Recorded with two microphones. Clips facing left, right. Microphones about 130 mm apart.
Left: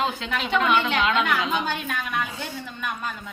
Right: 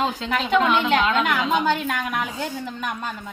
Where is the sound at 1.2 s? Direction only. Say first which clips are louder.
Right 2 dB; 45° right (ahead or behind).